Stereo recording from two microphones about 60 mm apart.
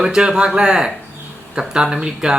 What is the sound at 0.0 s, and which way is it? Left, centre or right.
Speech, centre.